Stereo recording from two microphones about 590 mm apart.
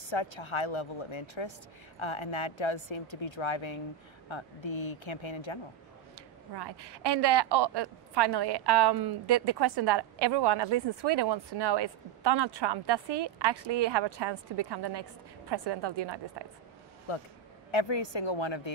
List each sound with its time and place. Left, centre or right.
0.1 s speech: left
6.5 s a woman's voice: right
17.1 s speech: left